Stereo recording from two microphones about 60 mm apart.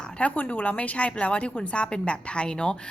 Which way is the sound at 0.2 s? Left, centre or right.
Left.